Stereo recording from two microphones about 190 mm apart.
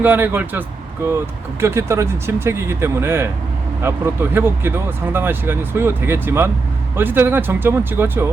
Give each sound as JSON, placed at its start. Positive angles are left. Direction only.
{"t": 0.0, "sound": "speech", "side_deg": -10}
{"t": 1.6, "sound": "speech", "side_deg": -15}